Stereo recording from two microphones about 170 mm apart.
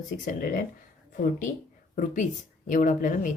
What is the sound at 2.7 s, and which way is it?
Speech, 50° left (ahead or behind).